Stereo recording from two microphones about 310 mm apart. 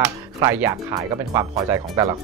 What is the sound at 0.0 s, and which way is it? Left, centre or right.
Speech, centre.